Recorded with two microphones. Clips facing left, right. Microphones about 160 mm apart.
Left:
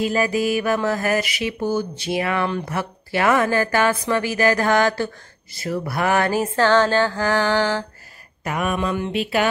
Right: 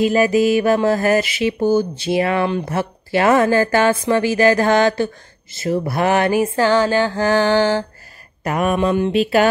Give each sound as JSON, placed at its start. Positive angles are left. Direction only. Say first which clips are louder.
{"t": 0.0, "sound": "mantra", "louder": "right 6 dB", "side_deg": -20}
{"t": 7.1, "sound": "mantra", "louder": "right 4 dB", "side_deg": -25}
{"t": 8.5, "sound": "mantra", "louder": "right 5 dB", "side_deg": -35}